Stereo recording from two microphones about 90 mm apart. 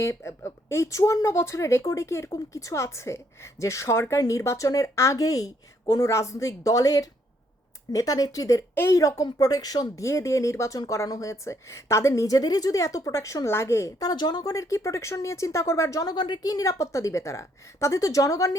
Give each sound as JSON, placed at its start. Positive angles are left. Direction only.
{"t": 0.0, "sound": "a woman's voice", "side_deg": 35}
{"t": 8.7, "sound": "a woman's voice", "side_deg": 25}
{"t": 9.0, "sound": "a woman's voice", "side_deg": 40}
{"t": 14.0, "sound": "speech", "side_deg": 50}
{"t": 14.5, "sound": "a woman's voice", "side_deg": 35}
{"t": 16.1, "sound": "a woman's voice", "side_deg": 55}